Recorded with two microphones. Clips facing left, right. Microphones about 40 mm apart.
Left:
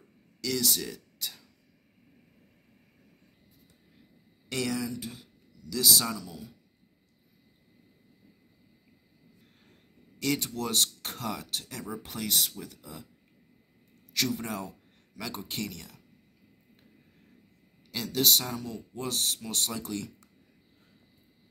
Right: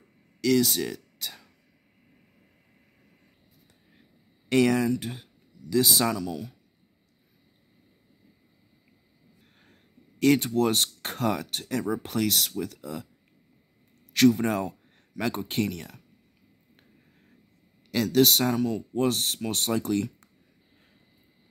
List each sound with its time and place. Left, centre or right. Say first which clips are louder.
0.4 s speech: right 8 dB; right
4.5 s speech: right 10 dB; right
5.7 s speech: right 4 dB; right
6.0 s speech: right 8 dB; right
10.1 s speech: right 9 dB; right
14.1 s speech: right 10 dB; right
17.9 s speech: right 6 dB; right
18.5 s speech: right 11 dB; right